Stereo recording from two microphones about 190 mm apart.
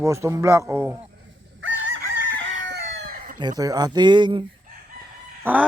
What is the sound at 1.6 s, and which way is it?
Chicken, 90° right.